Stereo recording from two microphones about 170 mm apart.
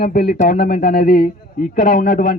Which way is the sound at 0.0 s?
60° left (ahead or behind).